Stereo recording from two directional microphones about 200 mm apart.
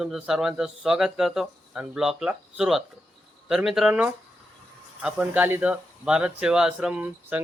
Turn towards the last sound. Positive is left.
turn(degrees=-10)  # may be behind; listen again after turning